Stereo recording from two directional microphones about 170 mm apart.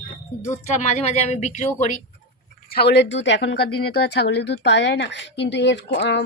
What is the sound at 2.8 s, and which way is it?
A woman's voice, 80° left.